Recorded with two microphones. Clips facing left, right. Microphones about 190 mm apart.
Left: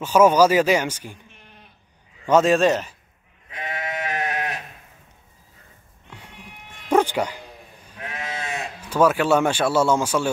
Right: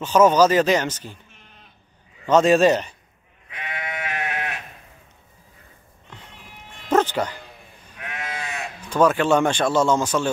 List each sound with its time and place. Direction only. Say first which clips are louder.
0.0 s speech: even; 10° left (ahead or behind)
2.2 s a man's voice: right 1 dB; 10° left (ahead or behind)
3.4 s sheep: left 2 dB; 40° left (ahead or behind)
6.9 s music: left 1 dB; 10° left (ahead or behind)
8.0 s sheep: left 1 dB; 30° left (ahead or behind)
8.8 s speech: even; 5° left (ahead or behind)